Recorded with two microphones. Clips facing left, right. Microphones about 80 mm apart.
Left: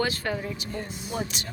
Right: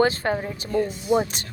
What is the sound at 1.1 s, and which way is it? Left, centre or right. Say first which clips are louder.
Speech: right 10 dB; right.